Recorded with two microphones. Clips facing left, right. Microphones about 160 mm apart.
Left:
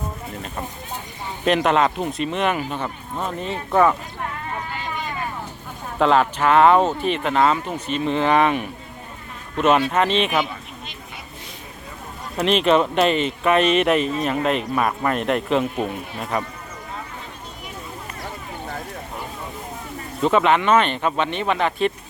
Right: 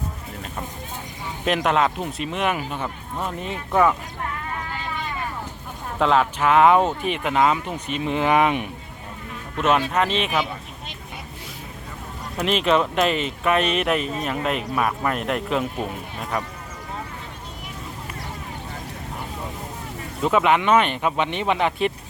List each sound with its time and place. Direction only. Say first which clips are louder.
1.5 s speech: left 3 dB; 5° right (ahead or behind)
6.0 s speech: left 2 dB; centre (ahead or behind)
9.6 s speech: left 3 dB; centre (ahead or behind)
12.5 s speech: left 3 dB; centre (ahead or behind)
20.2 s speech: left 1 dB; 5° right (ahead or behind)